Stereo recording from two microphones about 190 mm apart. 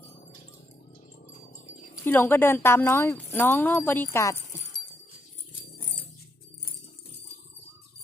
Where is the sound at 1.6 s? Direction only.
10° left (ahead or behind).